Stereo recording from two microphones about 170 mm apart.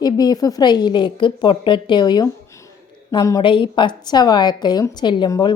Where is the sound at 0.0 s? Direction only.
20° left (ahead or behind).